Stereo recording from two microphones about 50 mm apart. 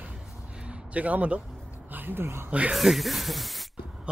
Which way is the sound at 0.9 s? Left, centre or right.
Right.